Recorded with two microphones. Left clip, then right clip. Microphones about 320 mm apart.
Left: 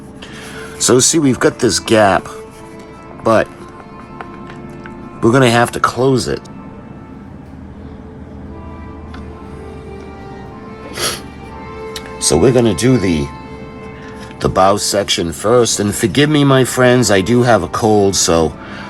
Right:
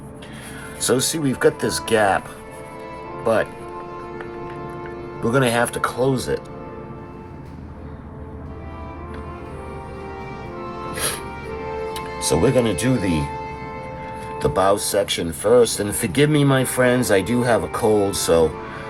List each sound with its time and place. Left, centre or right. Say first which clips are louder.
0.8 s speech: left 9 dB; left
3.2 s speech: left 7 dB; left
5.2 s speech: left 8 dB; left
10.9 s music: left 8 dB; left
11.9 s speech: left 8 dB; left
14.3 s speech: left 6 dB; left